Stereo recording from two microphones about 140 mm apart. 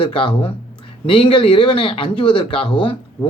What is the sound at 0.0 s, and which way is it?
A woman's voice, 35° left (ahead or behind).